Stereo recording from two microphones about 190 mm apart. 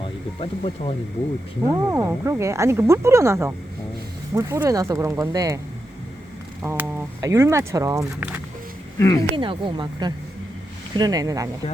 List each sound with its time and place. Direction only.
0.3 s speech: 30° left (ahead or behind)
1.7 s speech: 15° right (ahead or behind)
6.6 s speech: 10° right (ahead or behind)
9.0 s speech: 15° left (ahead or behind)
9.3 s speech: 25° right (ahead or behind)